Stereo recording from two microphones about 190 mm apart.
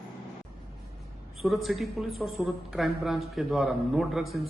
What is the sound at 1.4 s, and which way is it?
A woman's voice, centre (ahead or behind).